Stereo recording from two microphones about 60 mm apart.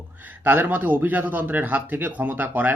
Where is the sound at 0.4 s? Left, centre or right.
Right.